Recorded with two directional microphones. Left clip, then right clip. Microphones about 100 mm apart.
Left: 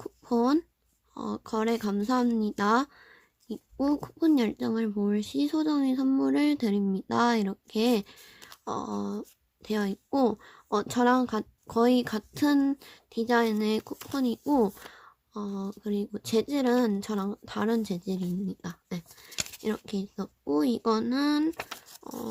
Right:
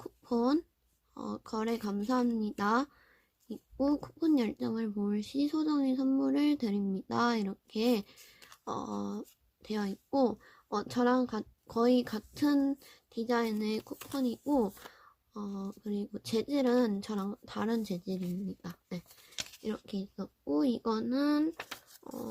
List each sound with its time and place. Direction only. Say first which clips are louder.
0.0 s a sound: left 5 dB; 45° left (ahead or behind)
1.1 s speech: left 6 dB; 40° left (ahead or behind)
9.6 s a child's voice: left 6 dB; 45° left (ahead or behind)
14.9 s speech: left 6 dB; 45° left (ahead or behind)
19.6 s speech: left 7 dB; 55° left (ahead or behind)
21.5 s speech: left 5 dB; 80° left
22.0 s dog: left 4 dB; 50° left (ahead or behind)